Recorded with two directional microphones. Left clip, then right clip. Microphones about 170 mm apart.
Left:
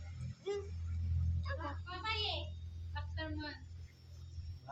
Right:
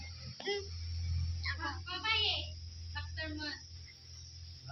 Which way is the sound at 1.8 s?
45° left (ahead or behind).